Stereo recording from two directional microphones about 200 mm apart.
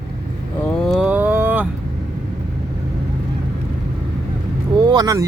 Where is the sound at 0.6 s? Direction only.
Centre (ahead or behind).